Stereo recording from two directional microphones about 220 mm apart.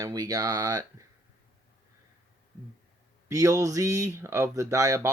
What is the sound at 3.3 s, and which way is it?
Speech, 15° right (ahead or behind).